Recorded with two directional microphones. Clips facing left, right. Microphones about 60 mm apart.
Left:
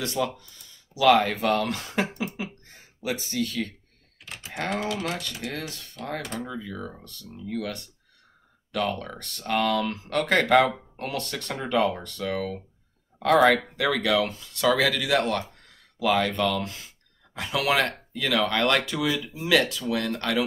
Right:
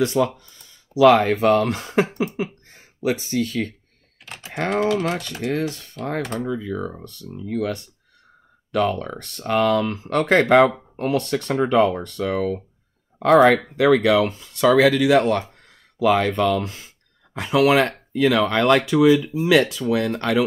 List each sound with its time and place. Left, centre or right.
0.0 s speech: right
4.2 s speech: right
4.6 s speech: right
5.4 s speech: right
8.8 s speech: right